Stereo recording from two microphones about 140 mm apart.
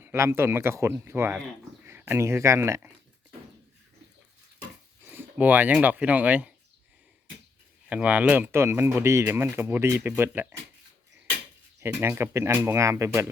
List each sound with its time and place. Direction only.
0.0 s speech: 15° right (ahead or behind)
5.0 s speech: 10° right (ahead or behind)
7.9 s speech: 10° right (ahead or behind)
11.8 s speech: 15° right (ahead or behind)